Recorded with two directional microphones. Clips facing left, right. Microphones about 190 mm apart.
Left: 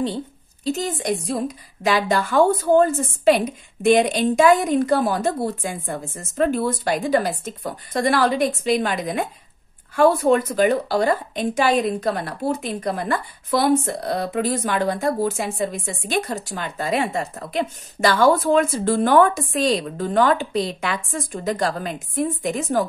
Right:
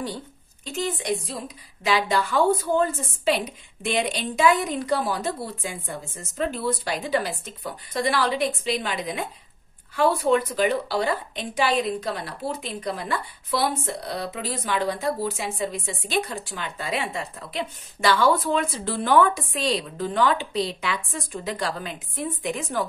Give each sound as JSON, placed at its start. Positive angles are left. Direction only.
{"t": 0.7, "sound": "a woman's voice", "side_deg": 40}